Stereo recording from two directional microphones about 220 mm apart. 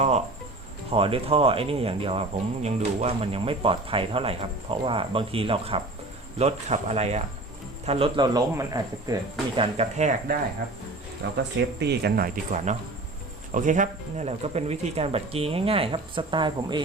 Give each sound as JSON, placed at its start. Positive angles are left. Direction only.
{"t": 0.9, "sound": "speech", "side_deg": -25}
{"t": 9.6, "sound": "speech", "side_deg": -30}
{"t": 11.2, "sound": "speech", "side_deg": -50}